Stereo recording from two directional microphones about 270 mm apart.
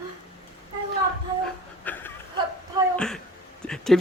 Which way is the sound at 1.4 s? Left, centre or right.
Centre.